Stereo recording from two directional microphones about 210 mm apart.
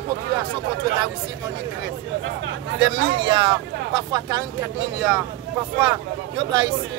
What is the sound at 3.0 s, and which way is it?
Speech, 55° right (ahead or behind).